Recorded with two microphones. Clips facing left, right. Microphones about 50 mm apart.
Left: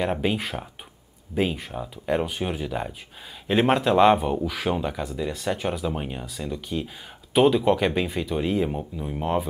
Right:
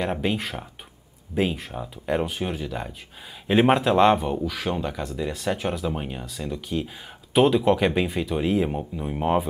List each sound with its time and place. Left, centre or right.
0.0 s speech: centre
3.4 s speech: centre